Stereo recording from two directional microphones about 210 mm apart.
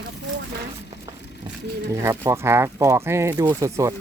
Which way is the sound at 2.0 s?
10° right (ahead or behind).